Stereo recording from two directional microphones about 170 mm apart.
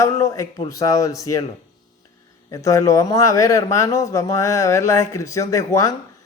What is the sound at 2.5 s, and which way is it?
A man's voice, 20° left (ahead or behind).